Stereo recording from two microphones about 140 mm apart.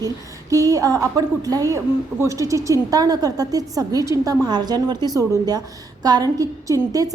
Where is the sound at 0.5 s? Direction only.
25° right (ahead or behind).